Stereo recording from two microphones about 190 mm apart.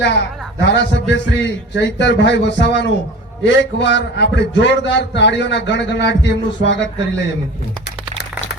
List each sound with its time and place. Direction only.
0.6 s a man's voice: 70° left (ahead or behind)